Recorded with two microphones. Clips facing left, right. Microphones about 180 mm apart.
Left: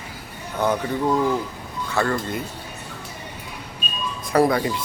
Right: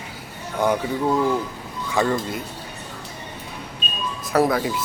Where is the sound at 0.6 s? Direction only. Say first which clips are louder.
Right 1 dB; 10° right (ahead or behind).